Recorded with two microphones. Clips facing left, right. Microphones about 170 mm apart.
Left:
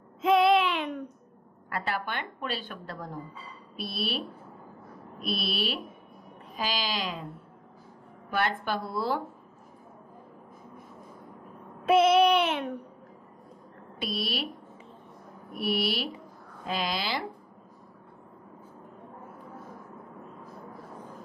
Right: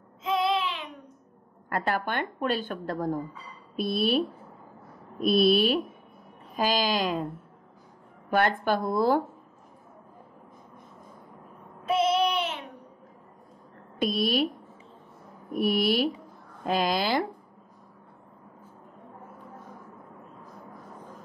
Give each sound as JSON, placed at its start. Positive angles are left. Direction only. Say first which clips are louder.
{"t": 0.2, "sound": "child singing", "louder": "left 5 dB", "side_deg": 60}
{"t": 1.7, "sound": "a woman's voice", "louder": "right 4 dB", "side_deg": -50}
{"t": 5.2, "sound": "a woman's voice", "louder": "right 11 dB", "side_deg": -45}
{"t": 8.3, "sound": "a woman's voice", "louder": "right 5 dB", "side_deg": -50}
{"t": 11.8, "sound": "child singing", "louder": "left 4 dB", "side_deg": 65}
{"t": 13.9, "sound": "a woman's voice", "louder": "right 7 dB", "side_deg": -45}
{"t": 15.5, "sound": "a woman's voice", "louder": "right 5 dB", "side_deg": -45}